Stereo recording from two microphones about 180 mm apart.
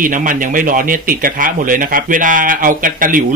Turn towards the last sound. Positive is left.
turn(degrees=-50)  # may be behind; listen again after turning